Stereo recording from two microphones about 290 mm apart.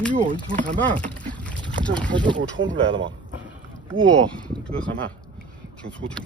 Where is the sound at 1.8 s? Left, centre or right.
Centre.